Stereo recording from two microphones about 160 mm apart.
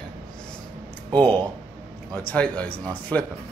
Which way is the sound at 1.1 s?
25° right (ahead or behind).